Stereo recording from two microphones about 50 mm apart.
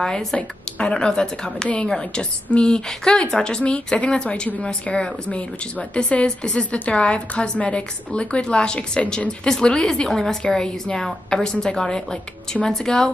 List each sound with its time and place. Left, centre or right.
0.0 s a woman's voice: centre
0.4 s a woman's voice: left